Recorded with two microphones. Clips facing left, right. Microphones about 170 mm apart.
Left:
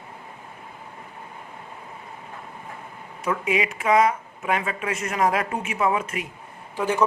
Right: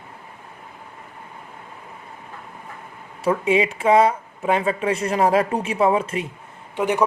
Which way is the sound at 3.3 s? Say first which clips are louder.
Right 5 dB; 30° right (ahead or behind).